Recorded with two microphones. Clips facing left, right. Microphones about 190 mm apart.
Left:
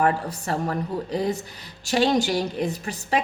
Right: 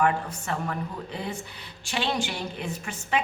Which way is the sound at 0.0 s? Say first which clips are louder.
Left 2 dB; 35° left (ahead or behind).